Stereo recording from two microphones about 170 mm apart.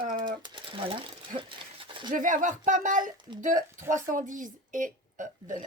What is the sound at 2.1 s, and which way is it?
Speech, 50° right (ahead or behind).